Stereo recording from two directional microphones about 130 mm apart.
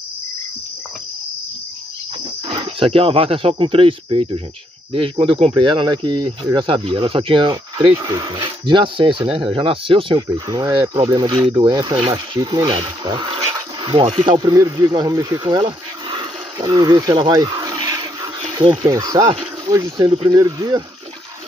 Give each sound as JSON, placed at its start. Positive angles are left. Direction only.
{"t": 2.1, "sound": "speech", "side_deg": -45}
{"t": 11.6, "sound": "speech", "side_deg": -30}
{"t": 11.9, "sound": "speech", "side_deg": -50}
{"t": 12.4, "sound": "speech", "side_deg": -35}
{"t": 15.4, "sound": "a sound", "side_deg": -40}
{"t": 18.4, "sound": "insect", "side_deg": -45}
{"t": 18.9, "sound": "speech", "side_deg": -25}